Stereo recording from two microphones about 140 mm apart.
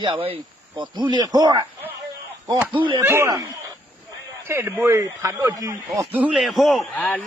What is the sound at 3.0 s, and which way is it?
A man's voice, 20° right (ahead or behind).